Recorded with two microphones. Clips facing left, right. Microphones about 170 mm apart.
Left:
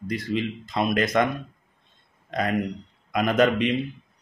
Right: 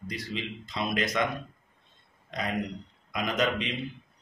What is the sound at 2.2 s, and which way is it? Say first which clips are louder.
A man's voice: left 6 dB; 55° left (ahead or behind).